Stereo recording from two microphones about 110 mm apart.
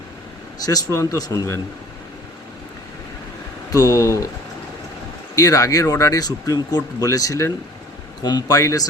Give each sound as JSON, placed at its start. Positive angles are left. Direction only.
{"t": 0.6, "sound": "speech", "side_deg": 30}
{"t": 3.7, "sound": "speech", "side_deg": 30}
{"t": 5.3, "sound": "speech", "side_deg": 30}